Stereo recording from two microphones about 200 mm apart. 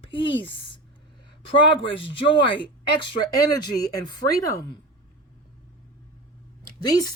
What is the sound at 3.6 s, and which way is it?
Speech, 20° left (ahead or behind).